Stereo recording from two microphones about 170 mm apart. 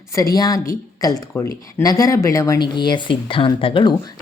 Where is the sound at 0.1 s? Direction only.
20° left (ahead or behind).